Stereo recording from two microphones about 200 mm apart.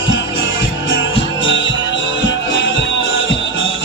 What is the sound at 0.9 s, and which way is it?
Music, 70° left (ahead or behind).